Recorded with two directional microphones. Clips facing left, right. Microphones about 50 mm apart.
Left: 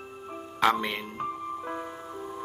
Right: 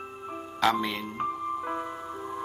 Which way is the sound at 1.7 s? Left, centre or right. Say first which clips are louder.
Right 3 dB; right.